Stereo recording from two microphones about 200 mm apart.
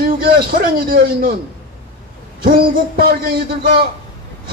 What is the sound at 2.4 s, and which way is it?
A man's voice, 45° right (ahead or behind).